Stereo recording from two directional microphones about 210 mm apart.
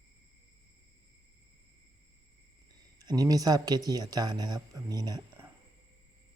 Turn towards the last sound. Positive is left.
turn(degrees=-15)  # may be behind; listen again after turning